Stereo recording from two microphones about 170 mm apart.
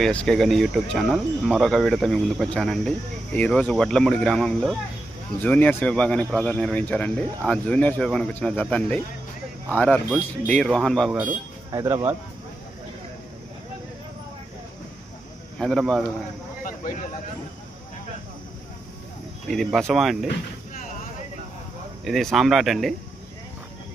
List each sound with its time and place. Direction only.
0.0 s speech: 5° left (ahead or behind)
11.7 s speech: 20° right (ahead or behind)
15.5 s speech: 5° left (ahead or behind)
16.6 s a sound: 55° left (ahead or behind)
19.5 s speech: centre (ahead or behind)
22.0 s speech: centre (ahead or behind)